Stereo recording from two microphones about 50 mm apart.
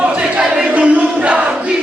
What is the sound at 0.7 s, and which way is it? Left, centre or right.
Crowd, right.